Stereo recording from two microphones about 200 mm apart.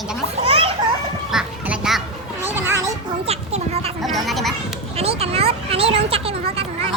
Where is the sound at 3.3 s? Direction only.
30° right (ahead or behind).